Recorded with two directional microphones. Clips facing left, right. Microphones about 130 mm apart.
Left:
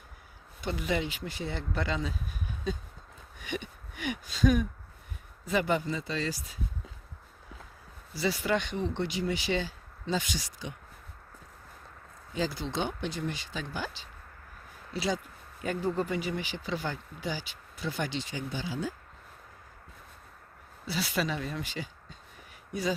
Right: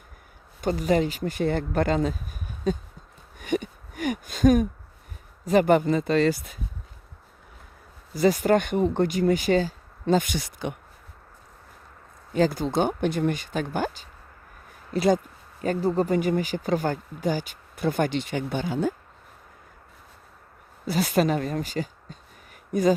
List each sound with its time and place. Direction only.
0.6 s speech: 40° right (ahead or behind)
3.3 s a sound: 50° right (ahead or behind)
5.5 s speech: 50° right (ahead or behind)
8.1 s speech: 45° right (ahead or behind)
12.3 s speech: 50° right (ahead or behind)
15.6 s speech: 40° right (ahead or behind); by 18.9 s 55° right (ahead or behind)
20.8 s speech: 45° right (ahead or behind)